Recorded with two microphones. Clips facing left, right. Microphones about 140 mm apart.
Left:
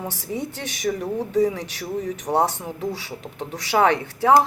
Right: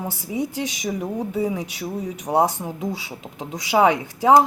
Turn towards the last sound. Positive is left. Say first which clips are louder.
# right 2 dB
turn(degrees=-15)  # may be behind; listen again after turning